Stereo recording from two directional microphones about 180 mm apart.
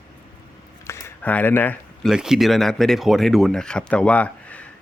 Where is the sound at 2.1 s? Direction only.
5° right (ahead or behind).